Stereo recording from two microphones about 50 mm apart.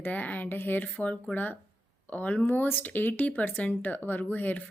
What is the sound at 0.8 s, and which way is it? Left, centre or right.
Speech, left.